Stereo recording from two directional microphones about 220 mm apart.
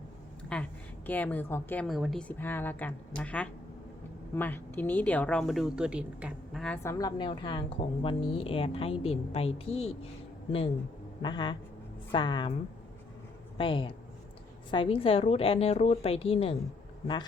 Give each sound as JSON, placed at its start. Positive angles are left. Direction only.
{"t": 0.4, "sound": "a woman's voice", "side_deg": 5}
{"t": 6.8, "sound": "a woman's voice", "side_deg": 20}
{"t": 11.2, "sound": "a woman's voice", "side_deg": 20}
{"t": 13.6, "sound": "a woman's voice", "side_deg": 25}